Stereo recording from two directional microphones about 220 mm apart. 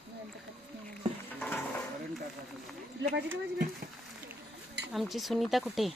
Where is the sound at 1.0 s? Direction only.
25° right (ahead or behind).